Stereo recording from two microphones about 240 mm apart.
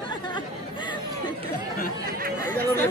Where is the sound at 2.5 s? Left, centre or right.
Centre.